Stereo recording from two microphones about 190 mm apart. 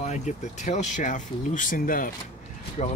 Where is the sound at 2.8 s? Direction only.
35° left (ahead or behind).